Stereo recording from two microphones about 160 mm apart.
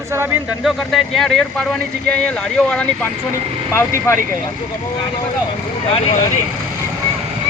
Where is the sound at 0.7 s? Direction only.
Centre (ahead or behind).